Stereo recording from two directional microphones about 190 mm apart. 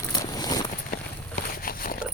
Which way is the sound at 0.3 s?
20° left (ahead or behind).